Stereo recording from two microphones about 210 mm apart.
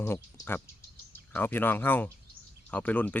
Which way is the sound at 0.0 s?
10° left (ahead or behind).